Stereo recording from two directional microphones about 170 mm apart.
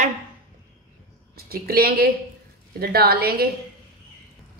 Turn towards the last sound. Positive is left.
turn(degrees=-65)  # may be behind; listen again after turning